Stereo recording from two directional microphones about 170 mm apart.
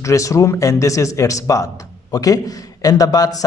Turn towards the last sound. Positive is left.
turn(degrees=20)  # may be behind; listen again after turning